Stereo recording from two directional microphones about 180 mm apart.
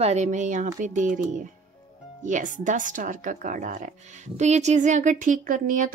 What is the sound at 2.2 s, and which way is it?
Speech, 45° right (ahead or behind).